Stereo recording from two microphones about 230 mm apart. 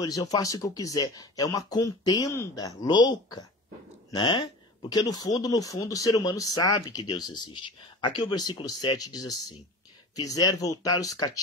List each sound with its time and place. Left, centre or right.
0.0 s speech: centre